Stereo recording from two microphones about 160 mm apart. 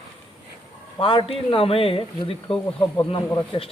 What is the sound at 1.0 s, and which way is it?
A man's voice, 35° left (ahead or behind).